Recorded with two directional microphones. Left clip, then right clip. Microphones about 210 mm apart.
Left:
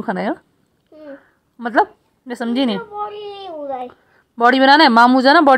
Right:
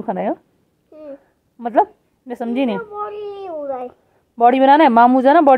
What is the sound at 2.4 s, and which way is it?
Speech, 20° left (ahead or behind).